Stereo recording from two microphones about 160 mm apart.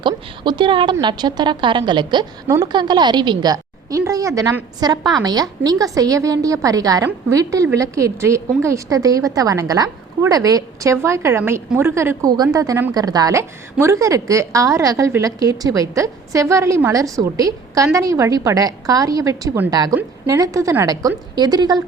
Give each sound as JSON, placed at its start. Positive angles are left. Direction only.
{"t": 0.0, "sound": "a woman's voice", "side_deg": -30}